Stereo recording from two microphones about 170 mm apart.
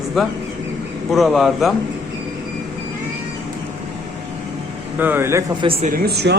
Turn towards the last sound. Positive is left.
turn(degrees=-75)  # may be behind; listen again after turning